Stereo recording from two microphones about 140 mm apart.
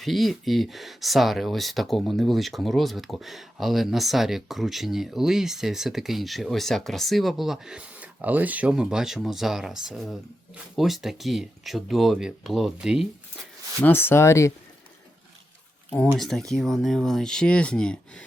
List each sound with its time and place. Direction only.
0.0 s speech: centre (ahead or behind)
13.8 s speech: 15° left (ahead or behind)
16.1 s speech: centre (ahead or behind)